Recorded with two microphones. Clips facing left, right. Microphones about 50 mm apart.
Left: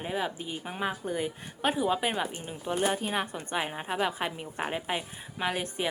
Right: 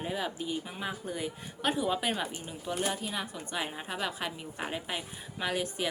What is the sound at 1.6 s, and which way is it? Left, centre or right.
A woman's voice, centre.